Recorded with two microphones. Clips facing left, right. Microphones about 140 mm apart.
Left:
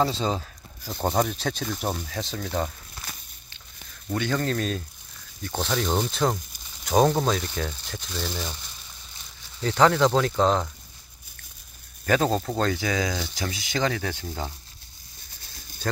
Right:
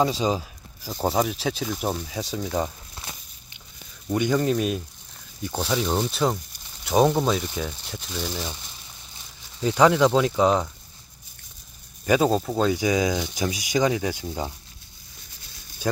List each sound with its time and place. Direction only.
0.0 s speech: 10° right (ahead or behind)
4.1 s speech: 15° right (ahead or behind)
9.6 s speech: 10° right (ahead or behind)
12.1 s speech: 5° right (ahead or behind)